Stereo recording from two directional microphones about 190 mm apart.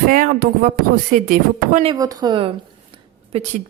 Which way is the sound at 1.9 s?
20° right (ahead or behind).